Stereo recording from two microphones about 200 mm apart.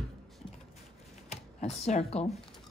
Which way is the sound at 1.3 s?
35° left (ahead or behind).